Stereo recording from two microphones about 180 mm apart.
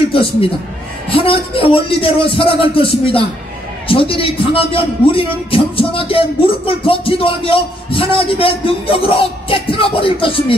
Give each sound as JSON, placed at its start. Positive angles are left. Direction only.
{"t": 1.1, "sound": "a man's voice", "side_deg": 30}